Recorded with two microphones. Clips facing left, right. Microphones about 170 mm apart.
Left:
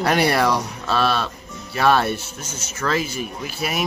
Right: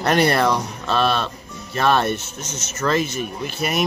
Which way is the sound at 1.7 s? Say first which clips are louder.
Left 1 dB; 10° left (ahead or behind).